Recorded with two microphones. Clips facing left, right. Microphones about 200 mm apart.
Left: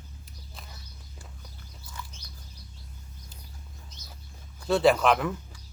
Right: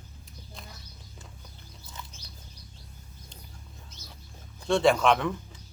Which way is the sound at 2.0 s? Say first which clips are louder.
Left 2 dB; 20° right (ahead or behind).